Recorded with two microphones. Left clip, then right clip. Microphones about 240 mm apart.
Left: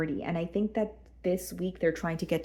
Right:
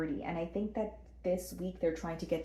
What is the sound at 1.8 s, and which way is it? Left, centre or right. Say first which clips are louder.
Speech: left 5 dB; left.